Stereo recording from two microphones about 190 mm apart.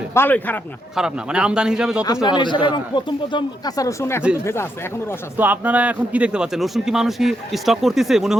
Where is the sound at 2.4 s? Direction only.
25° left (ahead or behind).